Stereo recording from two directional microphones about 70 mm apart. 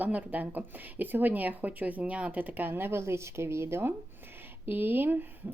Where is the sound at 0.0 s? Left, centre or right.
Right.